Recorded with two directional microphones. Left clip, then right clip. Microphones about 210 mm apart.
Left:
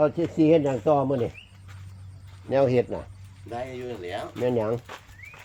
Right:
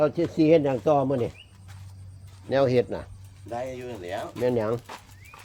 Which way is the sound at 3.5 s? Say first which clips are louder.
Even; 40° right (ahead or behind).